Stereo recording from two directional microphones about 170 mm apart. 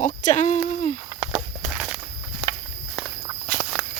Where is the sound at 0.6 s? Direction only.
45° left (ahead or behind).